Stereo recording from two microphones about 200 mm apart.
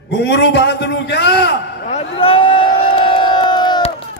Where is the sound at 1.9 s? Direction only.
30° left (ahead or behind).